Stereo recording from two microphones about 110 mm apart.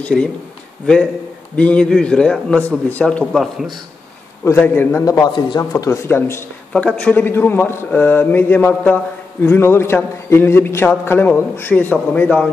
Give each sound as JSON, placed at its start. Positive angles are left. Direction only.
{"t": 0.0, "sound": "a man's voice", "side_deg": 10}
{"t": 1.6, "sound": "a man's voice", "side_deg": 10}
{"t": 4.6, "sound": "a man's voice", "side_deg": 20}
{"t": 5.0, "sound": "speech", "side_deg": 35}
{"t": 5.6, "sound": "a man's voice", "side_deg": 30}
{"t": 6.7, "sound": "a man's voice", "side_deg": 10}